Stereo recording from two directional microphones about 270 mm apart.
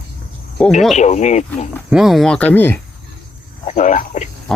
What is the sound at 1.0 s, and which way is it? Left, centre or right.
Speech, left.